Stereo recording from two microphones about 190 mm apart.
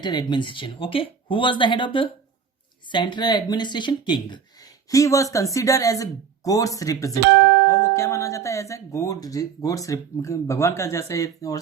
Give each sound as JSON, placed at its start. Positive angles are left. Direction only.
{"t": 0.0, "sound": "speech", "side_deg": 20}